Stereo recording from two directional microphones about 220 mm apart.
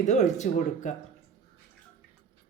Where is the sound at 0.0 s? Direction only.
30° left (ahead or behind).